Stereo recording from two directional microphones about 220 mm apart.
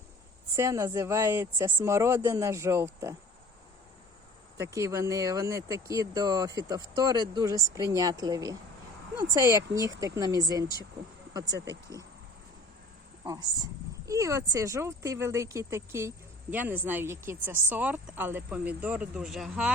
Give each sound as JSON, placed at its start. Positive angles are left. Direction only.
{"t": 0.5, "sound": "speech", "side_deg": -15}
{"t": 4.5, "sound": "speech", "side_deg": -15}
{"t": 13.2, "sound": "speech", "side_deg": -15}